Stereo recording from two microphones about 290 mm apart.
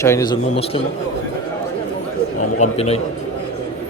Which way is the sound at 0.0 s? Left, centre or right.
Centre.